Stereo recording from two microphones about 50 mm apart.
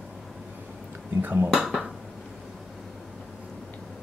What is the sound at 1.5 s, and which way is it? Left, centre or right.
Speech, centre.